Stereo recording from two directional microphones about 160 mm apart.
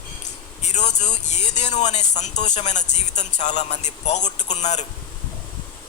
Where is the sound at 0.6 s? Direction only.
45° left (ahead or behind).